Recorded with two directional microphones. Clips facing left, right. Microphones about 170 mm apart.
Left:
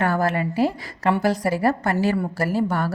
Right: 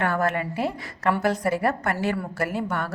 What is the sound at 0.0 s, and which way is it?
A woman's voice, 35° left (ahead or behind).